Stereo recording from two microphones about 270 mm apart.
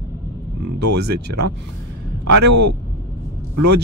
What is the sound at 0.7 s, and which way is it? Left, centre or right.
Speech, right.